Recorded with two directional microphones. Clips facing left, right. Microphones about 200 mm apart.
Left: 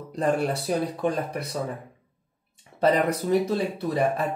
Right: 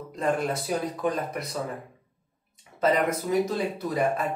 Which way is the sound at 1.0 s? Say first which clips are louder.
Left 2 dB; 30° left (ahead or behind).